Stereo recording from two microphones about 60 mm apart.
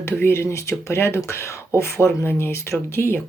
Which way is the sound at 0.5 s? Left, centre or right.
Left.